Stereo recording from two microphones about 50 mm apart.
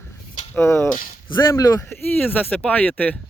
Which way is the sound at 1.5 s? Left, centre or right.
Left.